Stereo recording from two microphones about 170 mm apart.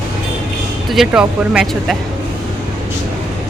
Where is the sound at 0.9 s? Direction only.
5° right (ahead or behind).